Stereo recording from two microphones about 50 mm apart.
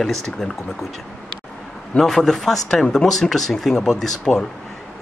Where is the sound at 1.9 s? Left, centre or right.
Centre.